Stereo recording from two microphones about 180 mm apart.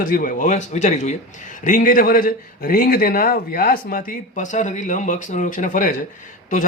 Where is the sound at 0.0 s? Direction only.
50° left (ahead or behind).